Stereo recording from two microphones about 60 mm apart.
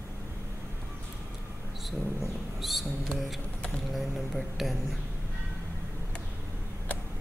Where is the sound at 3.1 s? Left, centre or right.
Centre.